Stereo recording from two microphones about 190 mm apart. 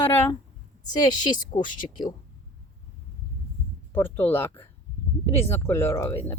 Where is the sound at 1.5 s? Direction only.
30° left (ahead or behind).